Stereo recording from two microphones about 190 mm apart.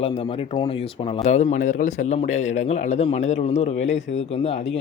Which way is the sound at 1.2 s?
35° left (ahead or behind).